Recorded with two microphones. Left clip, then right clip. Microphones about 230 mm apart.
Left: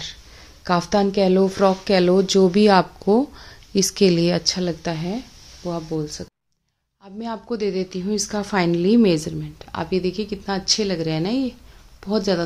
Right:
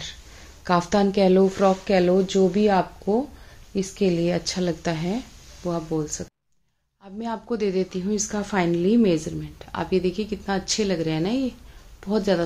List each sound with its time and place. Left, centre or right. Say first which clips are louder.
0.7 s speech: left 1 dB; centre; by 4.4 s left
4.4 s a woman's voice: left 3 dB; centre